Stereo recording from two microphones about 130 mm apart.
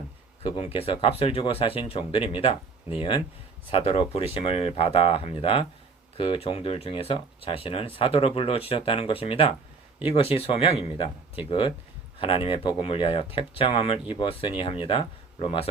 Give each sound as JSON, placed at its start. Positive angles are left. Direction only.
{"t": 0.4, "sound": "speech", "side_deg": 45}
{"t": 3.7, "sound": "speech", "side_deg": 45}